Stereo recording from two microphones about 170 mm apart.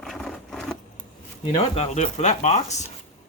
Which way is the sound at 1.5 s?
35° left (ahead or behind).